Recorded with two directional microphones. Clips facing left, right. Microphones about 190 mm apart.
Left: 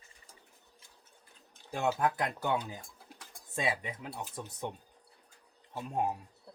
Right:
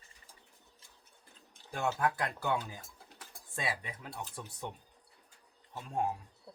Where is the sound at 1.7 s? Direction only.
25° left (ahead or behind).